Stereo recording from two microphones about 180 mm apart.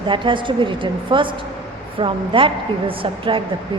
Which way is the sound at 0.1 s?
25° right (ahead or behind).